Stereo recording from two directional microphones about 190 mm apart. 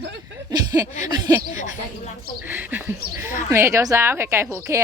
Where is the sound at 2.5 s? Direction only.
10° right (ahead or behind).